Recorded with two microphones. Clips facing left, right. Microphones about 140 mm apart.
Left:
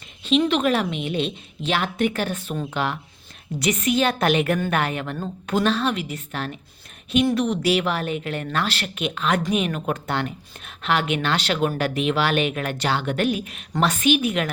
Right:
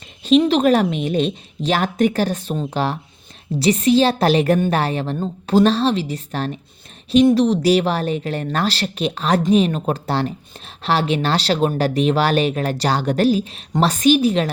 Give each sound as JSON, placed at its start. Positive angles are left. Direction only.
{"t": 0.3, "sound": "speech", "side_deg": -40}